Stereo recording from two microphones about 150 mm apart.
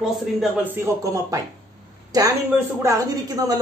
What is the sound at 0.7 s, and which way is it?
Speech, 20° right (ahead or behind).